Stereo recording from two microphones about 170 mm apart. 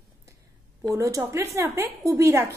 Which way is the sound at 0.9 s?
20° right (ahead or behind).